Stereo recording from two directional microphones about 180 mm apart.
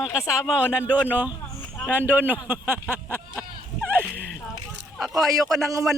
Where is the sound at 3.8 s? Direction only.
10° right (ahead or behind).